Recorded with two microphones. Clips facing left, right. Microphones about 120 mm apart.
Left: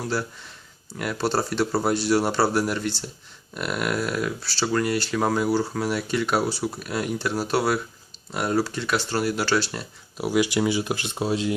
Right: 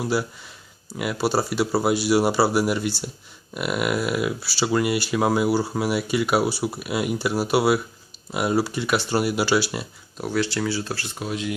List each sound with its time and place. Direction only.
0.0 s speech: 10° right (ahead or behind)
10.2 s speech: 10° left (ahead or behind); by 11.5 s 30° left (ahead or behind)